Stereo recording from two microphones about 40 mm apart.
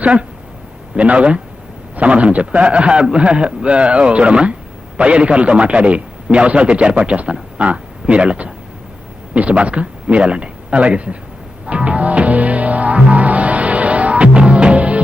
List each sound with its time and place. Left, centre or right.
0.0 s a man's voice: right
11.6 s music: right